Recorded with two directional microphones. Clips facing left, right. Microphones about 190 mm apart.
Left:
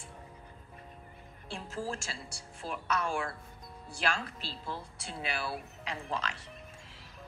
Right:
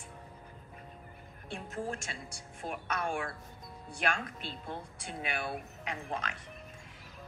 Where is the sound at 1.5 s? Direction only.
30° left (ahead or behind).